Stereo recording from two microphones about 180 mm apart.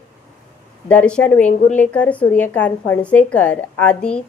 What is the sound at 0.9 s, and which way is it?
A woman's voice, 5° left (ahead or behind).